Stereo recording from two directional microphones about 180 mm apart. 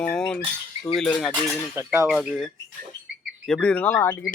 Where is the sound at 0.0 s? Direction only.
5° left (ahead or behind).